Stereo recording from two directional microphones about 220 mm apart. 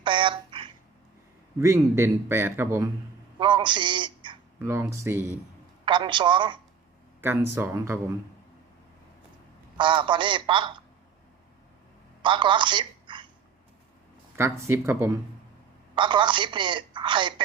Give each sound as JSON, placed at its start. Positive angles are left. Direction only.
{"t": 0.0, "sound": "a sound", "side_deg": -20}
{"t": 1.5, "sound": "a man's voice", "side_deg": -10}
{"t": 9.7, "sound": "a woman's voice", "side_deg": -20}
{"t": 12.2, "sound": "a woman's voice", "side_deg": -20}
{"t": 14.3, "sound": "a man's voice", "side_deg": -10}